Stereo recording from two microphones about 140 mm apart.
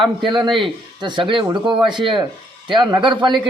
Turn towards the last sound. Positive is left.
turn(degrees=-35)  # may be behind; listen again after turning